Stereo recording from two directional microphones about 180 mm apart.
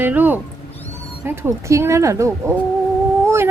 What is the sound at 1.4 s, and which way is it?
A woman's voice, 15° right (ahead or behind).